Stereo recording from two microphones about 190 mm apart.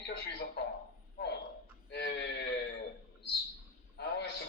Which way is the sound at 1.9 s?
60° left (ahead or behind).